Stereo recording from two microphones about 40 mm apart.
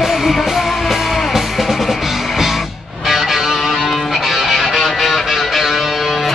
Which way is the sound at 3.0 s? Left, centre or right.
Centre.